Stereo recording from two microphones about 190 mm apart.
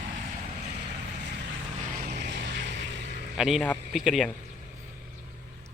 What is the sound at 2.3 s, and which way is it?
Music, 65° right (ahead or behind).